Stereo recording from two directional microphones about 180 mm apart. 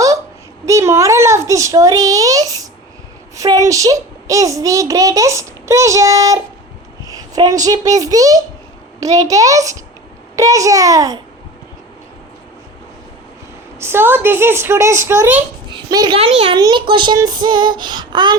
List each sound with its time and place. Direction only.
0.6 s a child's voice: 15° right (ahead or behind)
13.7 s a child's voice: 15° right (ahead or behind)
15.7 s a sound: 25° right (ahead or behind)
16.1 s a child's voice: 35° right (ahead or behind)